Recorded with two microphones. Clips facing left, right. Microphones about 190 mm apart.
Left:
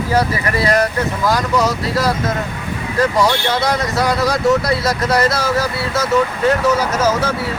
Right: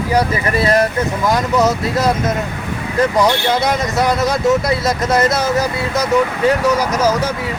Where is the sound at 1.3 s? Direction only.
20° right (ahead or behind).